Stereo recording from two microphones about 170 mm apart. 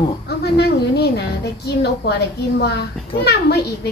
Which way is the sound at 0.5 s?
75° left (ahead or behind).